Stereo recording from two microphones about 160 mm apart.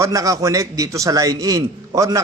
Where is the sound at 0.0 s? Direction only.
20° right (ahead or behind).